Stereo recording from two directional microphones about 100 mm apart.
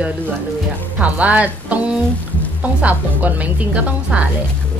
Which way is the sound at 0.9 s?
15° right (ahead or behind).